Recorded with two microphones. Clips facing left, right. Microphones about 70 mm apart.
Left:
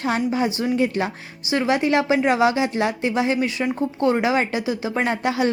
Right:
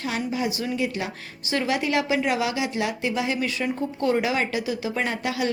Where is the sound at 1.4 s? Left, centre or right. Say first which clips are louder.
Left 4 dB; centre.